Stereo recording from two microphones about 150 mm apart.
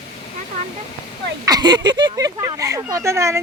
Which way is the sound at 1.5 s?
25° right (ahead or behind).